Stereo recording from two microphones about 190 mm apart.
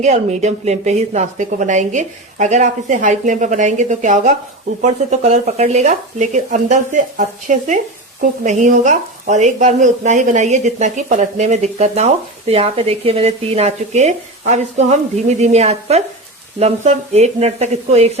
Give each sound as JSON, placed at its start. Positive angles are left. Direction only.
{"t": 0.0, "sound": "speech", "side_deg": -35}